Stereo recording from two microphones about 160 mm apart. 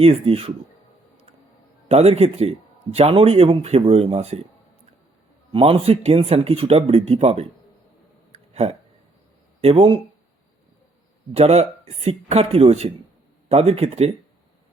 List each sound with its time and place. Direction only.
0.0 s speech: 40° right (ahead or behind)
1.9 s speech: 40° right (ahead or behind)
5.5 s speech: 35° right (ahead or behind)
8.3 s a sound: 40° right (ahead or behind)
9.6 s speech: 40° right (ahead or behind)
11.3 s speech: 40° right (ahead or behind)